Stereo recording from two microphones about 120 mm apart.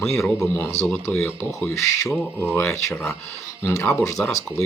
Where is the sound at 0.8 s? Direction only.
5° left (ahead or behind).